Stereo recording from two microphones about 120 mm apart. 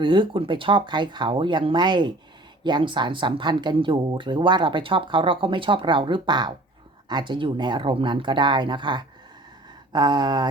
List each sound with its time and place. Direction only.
0.0 s speech: 40° right (ahead or behind)